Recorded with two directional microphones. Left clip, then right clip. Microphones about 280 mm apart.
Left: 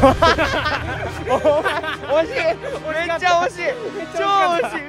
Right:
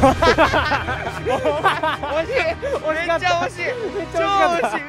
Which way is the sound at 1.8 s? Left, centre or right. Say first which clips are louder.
Right 4 dB; centre.